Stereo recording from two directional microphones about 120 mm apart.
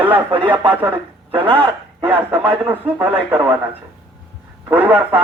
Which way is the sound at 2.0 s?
15° right (ahead or behind).